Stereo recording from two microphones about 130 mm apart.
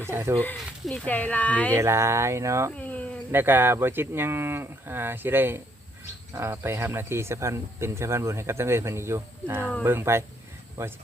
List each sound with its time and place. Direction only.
0.0 s speech: 20° right (ahead or behind)
0.9 s speech: 10° left (ahead or behind)
1.7 s speech: 20° right (ahead or behind)
2.7 s speech: 10° left (ahead or behind)
3.3 s speech: 15° right (ahead or behind)